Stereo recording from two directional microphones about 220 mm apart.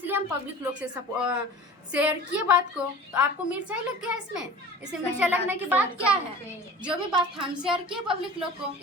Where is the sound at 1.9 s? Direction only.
5° right (ahead or behind).